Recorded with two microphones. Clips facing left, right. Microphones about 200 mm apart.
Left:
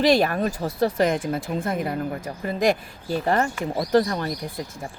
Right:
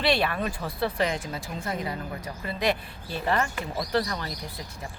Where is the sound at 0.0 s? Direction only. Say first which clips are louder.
Left 6 dB; 45° left (ahead or behind).